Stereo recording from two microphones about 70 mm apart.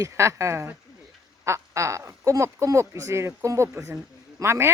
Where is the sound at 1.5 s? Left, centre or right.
Right.